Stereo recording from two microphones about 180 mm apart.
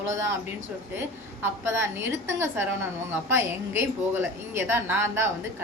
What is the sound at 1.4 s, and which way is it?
A woman's voice, 15° right (ahead or behind).